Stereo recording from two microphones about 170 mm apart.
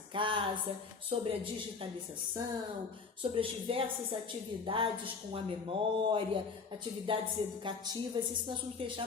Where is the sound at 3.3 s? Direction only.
30° right (ahead or behind).